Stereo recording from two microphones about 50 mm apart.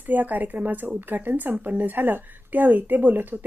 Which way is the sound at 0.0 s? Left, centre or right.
Right.